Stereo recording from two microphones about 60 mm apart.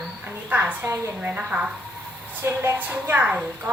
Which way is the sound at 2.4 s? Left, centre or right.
Right.